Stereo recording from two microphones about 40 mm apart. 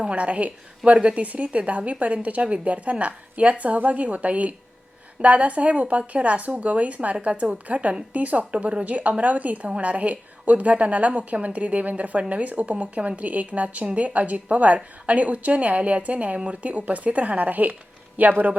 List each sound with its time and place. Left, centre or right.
0.0 s a woman's voice: right